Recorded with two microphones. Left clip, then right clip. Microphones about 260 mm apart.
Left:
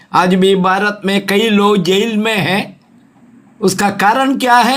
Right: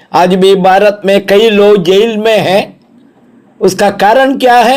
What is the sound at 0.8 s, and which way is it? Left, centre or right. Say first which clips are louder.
Speech: right 9 dB; centre.